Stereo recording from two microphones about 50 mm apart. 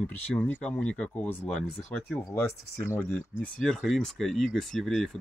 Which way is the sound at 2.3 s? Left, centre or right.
Left.